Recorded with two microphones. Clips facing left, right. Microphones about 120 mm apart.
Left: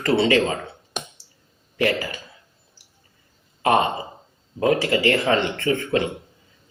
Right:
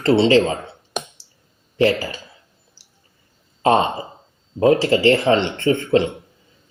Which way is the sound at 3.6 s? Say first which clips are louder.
Right 3 dB; 30° right (ahead or behind).